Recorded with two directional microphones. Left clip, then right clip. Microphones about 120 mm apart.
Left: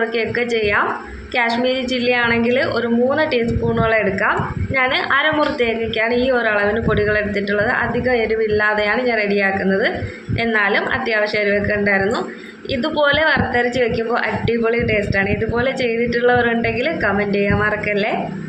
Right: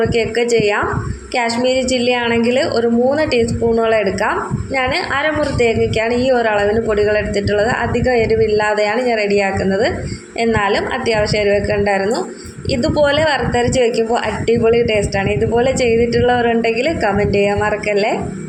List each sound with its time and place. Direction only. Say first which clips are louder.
2.1 s a woman's voice: right 1 dB; 30° right (ahead or behind)
11.4 s a woman's voice: right 2 dB; 40° right (ahead or behind)